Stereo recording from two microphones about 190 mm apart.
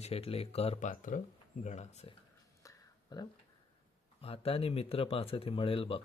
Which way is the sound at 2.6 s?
20° left (ahead or behind).